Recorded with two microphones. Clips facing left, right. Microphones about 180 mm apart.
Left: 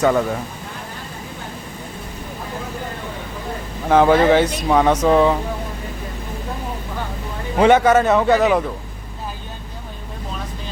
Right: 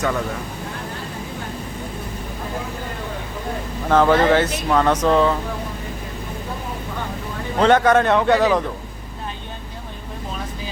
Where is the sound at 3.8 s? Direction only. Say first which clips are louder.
Left 2 dB; 10° left (ahead or behind).